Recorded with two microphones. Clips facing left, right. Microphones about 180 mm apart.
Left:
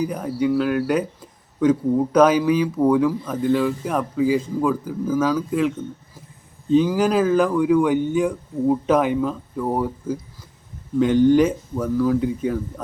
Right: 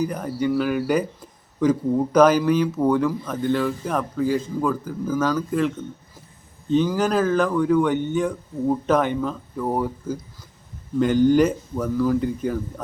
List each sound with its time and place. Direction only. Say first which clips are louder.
0.0 s speech: left 2 dB; 5° left (ahead or behind)